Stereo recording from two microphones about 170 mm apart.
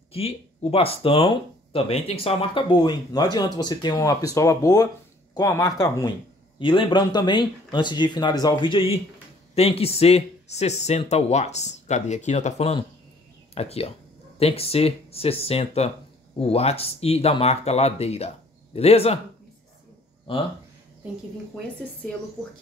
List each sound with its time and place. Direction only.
0.1 s speech: 35° left (ahead or behind)
20.3 s speech: 30° left (ahead or behind)